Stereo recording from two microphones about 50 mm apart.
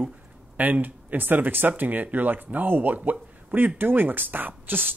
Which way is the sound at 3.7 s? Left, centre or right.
Right.